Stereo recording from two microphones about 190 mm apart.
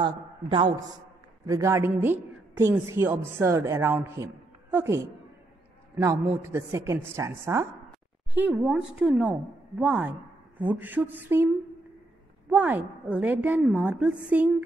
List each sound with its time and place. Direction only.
0.0 s a man's voice: 25° right (ahead or behind); by 14.5 s 5° right (ahead or behind)